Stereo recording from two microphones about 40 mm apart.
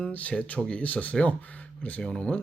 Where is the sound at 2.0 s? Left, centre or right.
Left.